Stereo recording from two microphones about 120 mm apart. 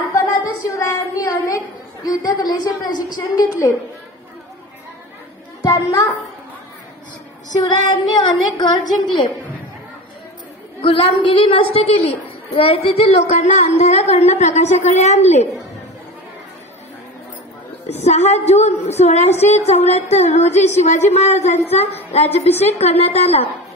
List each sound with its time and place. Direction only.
0.7 s a sound: 25° left (ahead or behind)
2.0 s female singing: 30° left (ahead or behind)
3.3 s a woman's voice: 30° left (ahead or behind)
5.6 s a child's voice: 30° left (ahead or behind)
7.5 s female singing: 35° left (ahead or behind)
10.8 s a woman's voice: 50° left (ahead or behind); by 15.4 s 70° left (ahead or behind)
17.8 s a woman's voice: 65° left (ahead or behind)